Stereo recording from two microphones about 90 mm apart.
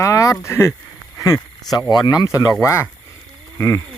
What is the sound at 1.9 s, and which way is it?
Speech, 50° left (ahead or behind).